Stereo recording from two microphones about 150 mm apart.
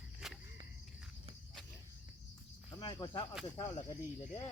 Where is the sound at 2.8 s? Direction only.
30° left (ahead or behind).